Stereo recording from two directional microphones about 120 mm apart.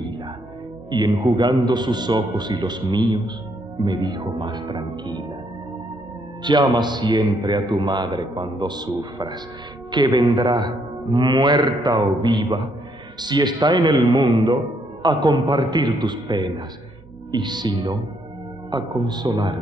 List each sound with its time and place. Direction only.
0.8 s speech: 35° right (ahead or behind)
6.4 s speech: 40° right (ahead or behind)